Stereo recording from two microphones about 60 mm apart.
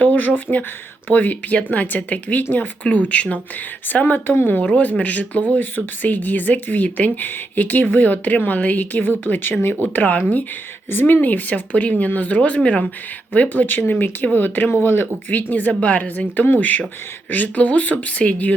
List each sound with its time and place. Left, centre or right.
0.0 s a sound: left
1.0 s speech: left
4.0 s speech: left
9.9 s speech: left